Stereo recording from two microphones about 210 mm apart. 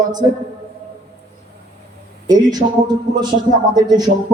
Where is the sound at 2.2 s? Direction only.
20° right (ahead or behind).